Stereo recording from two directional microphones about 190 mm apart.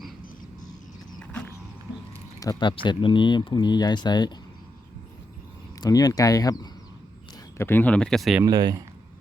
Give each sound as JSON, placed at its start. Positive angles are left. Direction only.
{"t": 2.4, "sound": "speech", "side_deg": 20}
{"t": 5.8, "sound": "speech", "side_deg": 20}
{"t": 8.4, "sound": "speech", "side_deg": -20}